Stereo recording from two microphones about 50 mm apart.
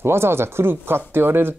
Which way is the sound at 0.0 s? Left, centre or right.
Right.